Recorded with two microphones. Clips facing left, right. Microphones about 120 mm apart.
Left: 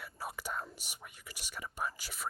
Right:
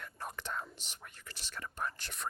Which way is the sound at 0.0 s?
10° left (ahead or behind).